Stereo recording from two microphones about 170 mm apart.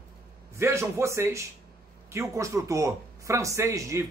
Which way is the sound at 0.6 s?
15° right (ahead or behind).